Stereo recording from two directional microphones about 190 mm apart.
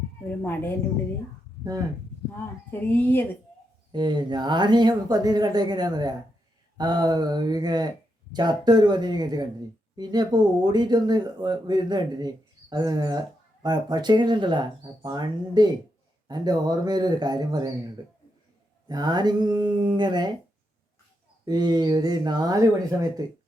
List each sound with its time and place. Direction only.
0.3 s a woman's voice: 10° left (ahead or behind)
2.9 s a woman's voice: 10° left (ahead or behind)
3.9 s a man's voice: 25° right (ahead or behind)
21.4 s speech: 20° right (ahead or behind)